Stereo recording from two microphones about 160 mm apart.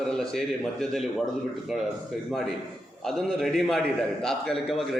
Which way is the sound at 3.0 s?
Centre (ahead or behind).